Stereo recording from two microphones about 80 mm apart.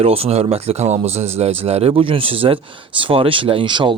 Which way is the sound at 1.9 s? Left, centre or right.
Right.